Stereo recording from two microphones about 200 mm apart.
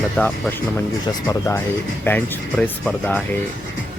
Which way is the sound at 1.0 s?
15° left (ahead or behind).